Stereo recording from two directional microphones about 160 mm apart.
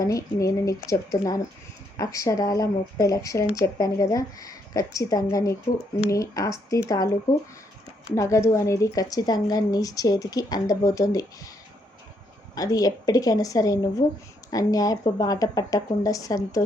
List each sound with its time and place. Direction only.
0.0 s speech: 20° left (ahead or behind)
8.1 s speech: 20° left (ahead or behind)
12.5 s speech: 20° left (ahead or behind)